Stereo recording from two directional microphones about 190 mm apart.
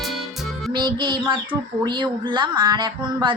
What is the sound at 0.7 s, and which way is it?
Speech, 25° right (ahead or behind).